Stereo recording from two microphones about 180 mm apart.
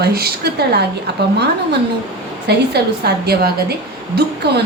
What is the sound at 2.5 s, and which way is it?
A woman's voice, 65° right (ahead or behind).